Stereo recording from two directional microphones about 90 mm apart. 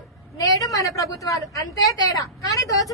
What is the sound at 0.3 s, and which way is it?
A woman's voice, 40° left (ahead or behind).